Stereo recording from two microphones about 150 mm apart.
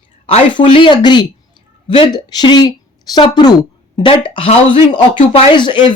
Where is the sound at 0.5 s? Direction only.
35° left (ahead or behind).